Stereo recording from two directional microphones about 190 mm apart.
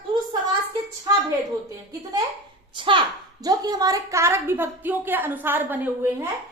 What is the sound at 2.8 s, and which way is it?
A child's voice, 25° right (ahead or behind).